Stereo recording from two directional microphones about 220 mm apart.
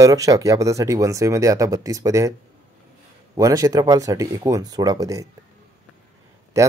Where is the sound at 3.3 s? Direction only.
15° right (ahead or behind).